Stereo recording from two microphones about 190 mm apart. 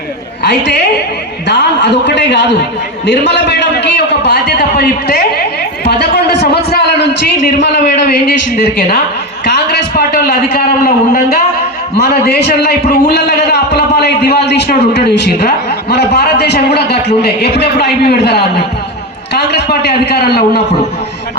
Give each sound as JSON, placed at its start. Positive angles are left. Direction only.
{"t": 0.4, "sound": "a woman's voice", "side_deg": 60}
{"t": 3.1, "sound": "a sound", "side_deg": 65}
{"t": 5.8, "sound": "a man's voice", "side_deg": 60}
{"t": 9.5, "sound": "a man's voice", "side_deg": 55}
{"t": 12.2, "sound": "a man's voice", "side_deg": 60}
{"t": 19.3, "sound": "a sound", "side_deg": 60}